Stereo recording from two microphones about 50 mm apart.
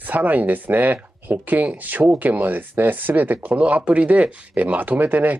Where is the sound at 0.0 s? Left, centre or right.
Right.